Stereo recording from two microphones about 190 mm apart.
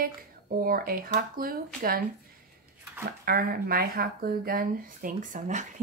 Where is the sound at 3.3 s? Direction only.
50° right (ahead or behind).